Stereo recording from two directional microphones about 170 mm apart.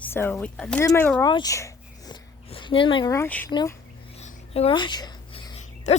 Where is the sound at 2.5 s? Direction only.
30° left (ahead or behind).